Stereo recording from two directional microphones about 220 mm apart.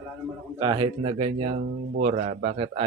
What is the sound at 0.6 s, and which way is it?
Speech, 20° right (ahead or behind).